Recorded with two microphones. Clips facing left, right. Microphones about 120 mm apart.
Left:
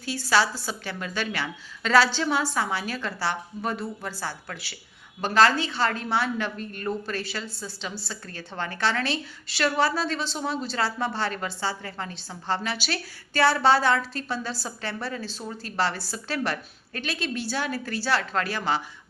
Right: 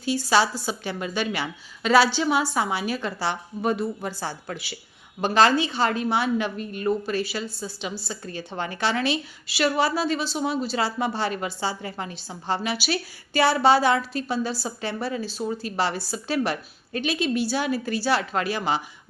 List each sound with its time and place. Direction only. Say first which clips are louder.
0.0 s a woman's voice: right 2 dB; 15° right (ahead or behind)